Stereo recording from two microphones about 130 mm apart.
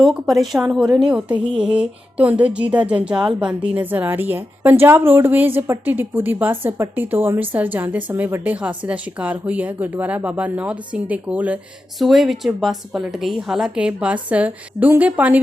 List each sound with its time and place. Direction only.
0.0 s a woman's voice: centre (ahead or behind)